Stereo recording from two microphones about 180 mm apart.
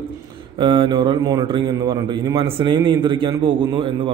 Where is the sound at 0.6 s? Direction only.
25° right (ahead or behind).